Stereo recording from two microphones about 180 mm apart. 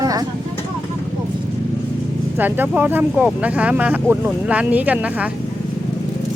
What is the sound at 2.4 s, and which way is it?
Speech, 10° right (ahead or behind).